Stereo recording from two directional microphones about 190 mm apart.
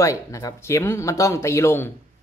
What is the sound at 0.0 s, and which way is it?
Speech, 15° left (ahead or behind).